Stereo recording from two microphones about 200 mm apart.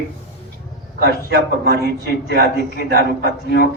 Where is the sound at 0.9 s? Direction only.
55° right (ahead or behind).